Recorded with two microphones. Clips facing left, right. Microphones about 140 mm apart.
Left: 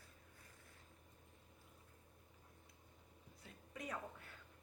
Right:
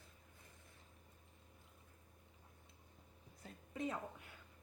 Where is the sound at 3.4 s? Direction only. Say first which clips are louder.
Right 6 dB; 30° right (ahead or behind).